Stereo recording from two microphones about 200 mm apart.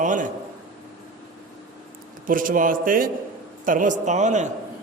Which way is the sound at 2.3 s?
45° right (ahead or behind).